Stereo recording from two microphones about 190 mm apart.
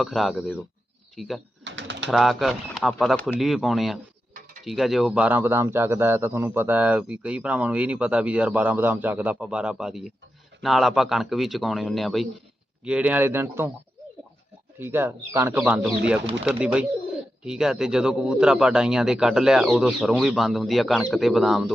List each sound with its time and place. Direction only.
0.0 s a man's voice: centre (ahead or behind)
1.6 s bird: 70° right (ahead or behind)
2.0 s a man's voice: centre (ahead or behind)
14.8 s a man's voice: 10° right (ahead or behind)